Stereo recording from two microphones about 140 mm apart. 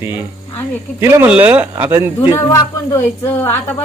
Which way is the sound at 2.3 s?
25° left (ahead or behind).